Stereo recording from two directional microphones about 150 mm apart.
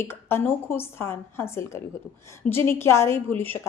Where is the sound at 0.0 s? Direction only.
15° left (ahead or behind).